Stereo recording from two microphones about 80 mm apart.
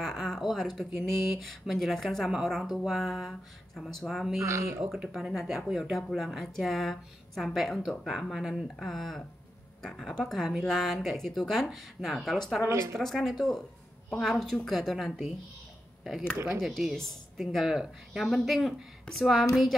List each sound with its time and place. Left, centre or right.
0.0 s a woman's voice: centre
4.4 s speech: right
5.1 s a woman's voice: centre
12.6 s speech: right
13.0 s a woman's voice: centre